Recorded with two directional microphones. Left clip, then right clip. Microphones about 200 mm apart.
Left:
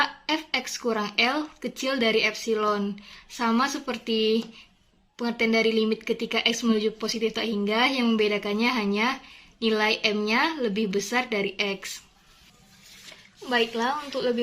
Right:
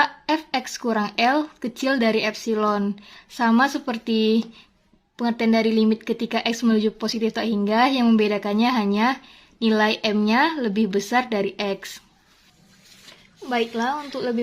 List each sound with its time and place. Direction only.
0.0 s speech: 50° right (ahead or behind)
13.5 s speech: 45° right (ahead or behind)